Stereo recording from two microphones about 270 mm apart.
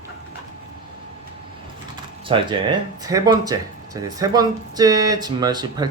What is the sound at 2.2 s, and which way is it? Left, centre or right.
Speech, centre.